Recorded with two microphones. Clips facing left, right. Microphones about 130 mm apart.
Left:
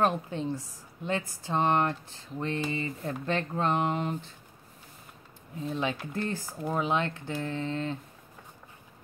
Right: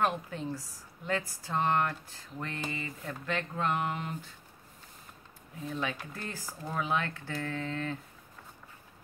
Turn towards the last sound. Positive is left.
turn(degrees=25)  # may be behind; listen again after turning